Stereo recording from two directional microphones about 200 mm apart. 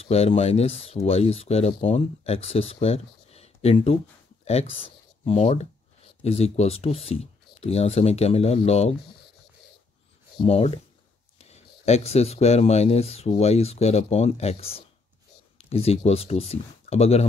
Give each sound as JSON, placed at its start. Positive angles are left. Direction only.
{"t": 0.0, "sound": "speech", "side_deg": 30}
{"t": 10.4, "sound": "speech", "side_deg": 30}